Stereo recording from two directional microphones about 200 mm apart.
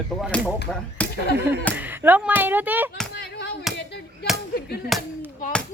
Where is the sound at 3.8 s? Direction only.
60° left (ahead or behind).